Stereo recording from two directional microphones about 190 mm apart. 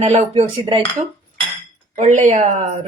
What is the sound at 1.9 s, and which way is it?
Speech, 40° right (ahead or behind).